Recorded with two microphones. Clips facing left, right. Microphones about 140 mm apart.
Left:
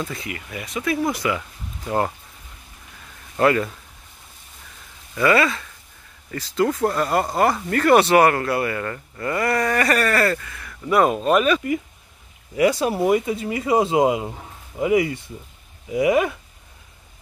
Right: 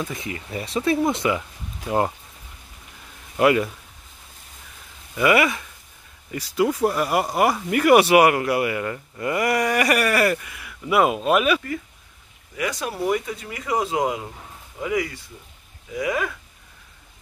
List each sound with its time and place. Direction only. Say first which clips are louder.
0.0 s speech: even; 15° right (ahead or behind)
0.3 s speech: right 3 dB; 30° right (ahead or behind)
3.3 s speech: even; 15° right (ahead or behind)
5.1 s speech: even; 15° right (ahead or behind)
12.5 s speech: left 8 dB; 30° left (ahead or behind)